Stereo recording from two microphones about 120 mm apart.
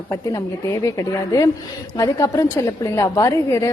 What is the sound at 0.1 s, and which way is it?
A woman's voice, 30° left (ahead or behind).